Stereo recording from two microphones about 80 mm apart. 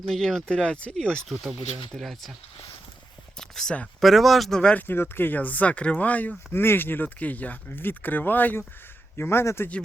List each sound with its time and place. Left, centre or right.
0.0 s speech: centre
3.3 s a sound: centre
4.0 s speech: centre
4.6 s speech: centre
6.5 s speech: left